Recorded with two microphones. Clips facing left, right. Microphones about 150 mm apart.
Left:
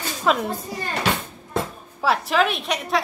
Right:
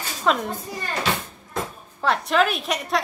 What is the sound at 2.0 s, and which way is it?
A woman's voice, 5° left (ahead or behind).